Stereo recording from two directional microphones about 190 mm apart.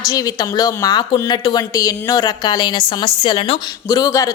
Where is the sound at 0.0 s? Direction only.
20° left (ahead or behind).